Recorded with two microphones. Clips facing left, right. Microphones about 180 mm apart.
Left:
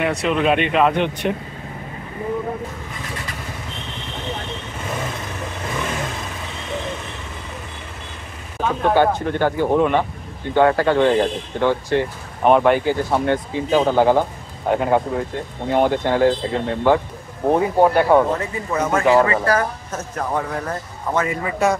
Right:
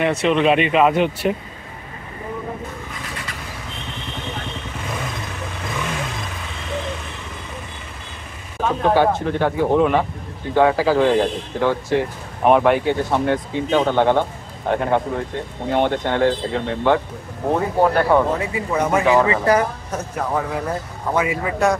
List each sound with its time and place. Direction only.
0.0 s speech: centre (ahead or behind)
8.6 s speech: centre (ahead or behind)
17.5 s speech: 15° left (ahead or behind)
18.4 s speech: 10° right (ahead or behind)